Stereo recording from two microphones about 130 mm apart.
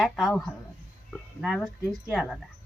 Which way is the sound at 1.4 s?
5° right (ahead or behind).